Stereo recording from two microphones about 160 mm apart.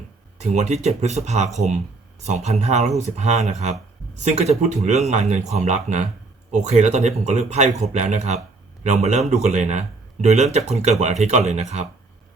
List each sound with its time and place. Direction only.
0.3 s speech: 45° right (ahead or behind)